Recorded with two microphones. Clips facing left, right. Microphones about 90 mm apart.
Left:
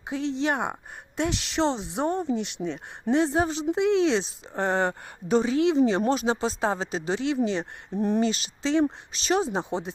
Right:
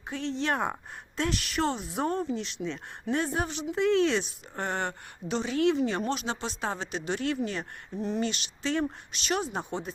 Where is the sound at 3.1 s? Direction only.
25° left (ahead or behind).